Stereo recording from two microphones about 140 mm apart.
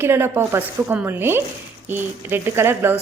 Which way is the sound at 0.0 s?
15° right (ahead or behind).